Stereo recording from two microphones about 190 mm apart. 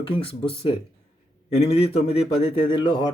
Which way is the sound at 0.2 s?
30° left (ahead or behind).